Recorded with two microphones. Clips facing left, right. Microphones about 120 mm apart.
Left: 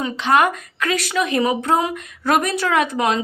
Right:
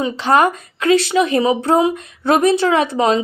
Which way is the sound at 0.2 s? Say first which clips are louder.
Right 2 dB; 35° right (ahead or behind).